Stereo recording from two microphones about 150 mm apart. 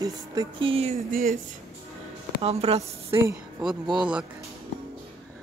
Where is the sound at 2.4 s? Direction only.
40° right (ahead or behind).